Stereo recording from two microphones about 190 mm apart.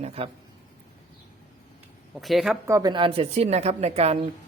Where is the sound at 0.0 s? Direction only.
30° right (ahead or behind).